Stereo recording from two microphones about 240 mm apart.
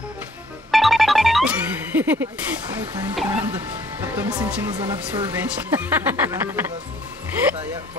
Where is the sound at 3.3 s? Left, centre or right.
Centre.